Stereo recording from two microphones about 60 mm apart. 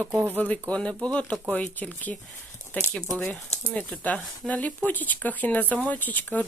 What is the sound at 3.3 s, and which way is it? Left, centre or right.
Speech, left.